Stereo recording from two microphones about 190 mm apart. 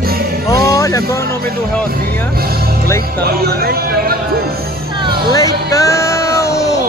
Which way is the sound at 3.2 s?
55° right (ahead or behind).